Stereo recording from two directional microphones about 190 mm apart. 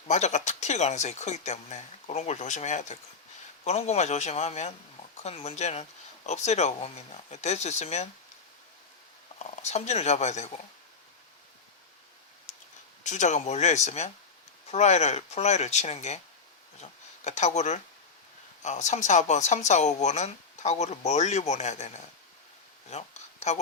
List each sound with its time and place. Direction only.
0.1 s speech: 35° left (ahead or behind)
9.4 s speech: 35° left (ahead or behind)
12.5 s a sound: 40° left (ahead or behind)
13.1 s speech: 40° left (ahead or behind)